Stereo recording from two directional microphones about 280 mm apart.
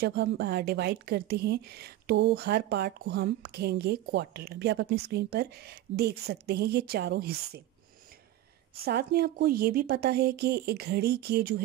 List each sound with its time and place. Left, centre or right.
0.0 s a woman's voice: right
8.8 s a woman's voice: right